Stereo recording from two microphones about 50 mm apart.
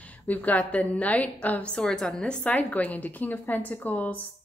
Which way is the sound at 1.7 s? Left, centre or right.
Centre.